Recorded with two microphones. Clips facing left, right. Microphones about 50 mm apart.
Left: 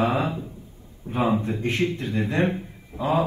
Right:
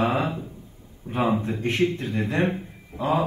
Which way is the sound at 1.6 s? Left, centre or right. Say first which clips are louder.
Right 1 dB; right.